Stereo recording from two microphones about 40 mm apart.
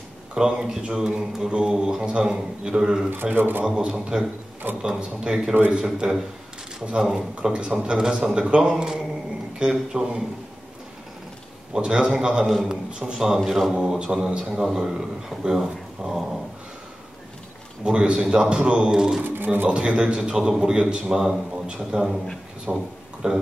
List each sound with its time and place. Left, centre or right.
0.3 s a man's voice: centre
3.3 s a man's voice: right
3.6 s a man's voice: right
11.7 s a man's voice: right
13.5 s a man's voice: centre
13.7 s a man's voice: right
17.8 s a man's voice: centre
18.9 s a man's voice: centre
19.2 s speech: right
19.7 s a man's voice: right